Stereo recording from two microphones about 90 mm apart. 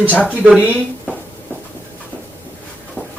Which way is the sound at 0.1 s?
15° left (ahead or behind).